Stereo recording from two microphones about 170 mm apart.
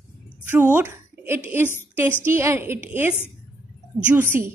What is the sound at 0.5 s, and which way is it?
A woman's voice, 15° right (ahead or behind).